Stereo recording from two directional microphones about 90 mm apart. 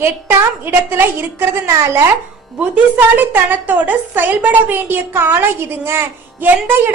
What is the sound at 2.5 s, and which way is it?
A woman's voice, 20° right (ahead or behind).